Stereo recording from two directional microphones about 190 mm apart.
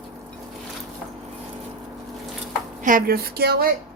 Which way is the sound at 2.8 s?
50° right (ahead or behind).